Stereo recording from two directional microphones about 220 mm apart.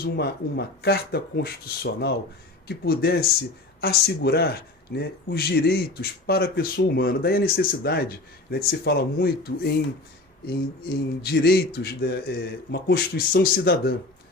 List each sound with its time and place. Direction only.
0.0 s speech: 45° left (ahead or behind)